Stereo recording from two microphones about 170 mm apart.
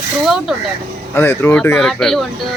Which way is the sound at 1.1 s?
15° left (ahead or behind).